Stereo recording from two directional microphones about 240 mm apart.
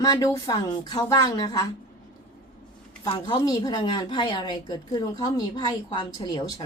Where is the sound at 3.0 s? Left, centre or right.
Centre.